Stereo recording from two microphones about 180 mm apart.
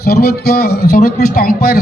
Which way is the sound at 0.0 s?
60° left (ahead or behind).